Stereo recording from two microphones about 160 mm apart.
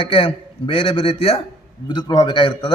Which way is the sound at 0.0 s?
35° left (ahead or behind).